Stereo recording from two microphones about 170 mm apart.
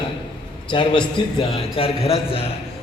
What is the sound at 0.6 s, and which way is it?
A man's voice, 25° left (ahead or behind).